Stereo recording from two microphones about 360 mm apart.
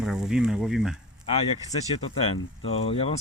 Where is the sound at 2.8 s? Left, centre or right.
Centre.